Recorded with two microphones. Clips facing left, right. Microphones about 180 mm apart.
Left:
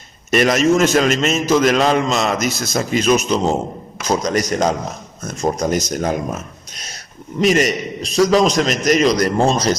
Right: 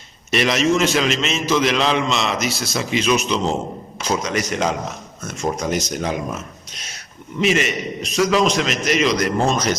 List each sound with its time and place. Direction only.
0.3 s a man's voice: 45° left (ahead or behind)
7.3 s a man's voice: 40° left (ahead or behind)